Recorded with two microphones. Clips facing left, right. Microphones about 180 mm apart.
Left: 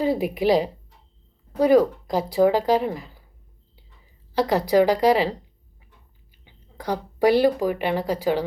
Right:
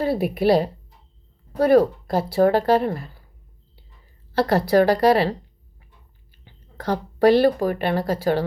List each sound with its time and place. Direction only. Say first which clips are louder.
0.0 s speech: right 1 dB; 15° left (ahead or behind)
3.8 s a sound: right 1 dB; 15° left (ahead or behind)
6.4 s a woman's voice: right 3 dB; 15° left (ahead or behind)